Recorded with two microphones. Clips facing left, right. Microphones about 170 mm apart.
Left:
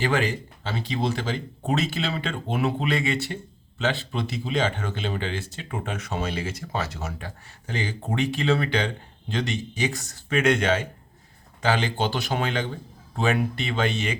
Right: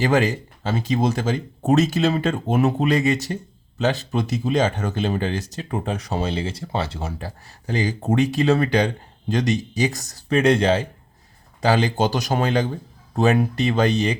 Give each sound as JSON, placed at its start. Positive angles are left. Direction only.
{"t": 0.0, "sound": "speech", "side_deg": -40}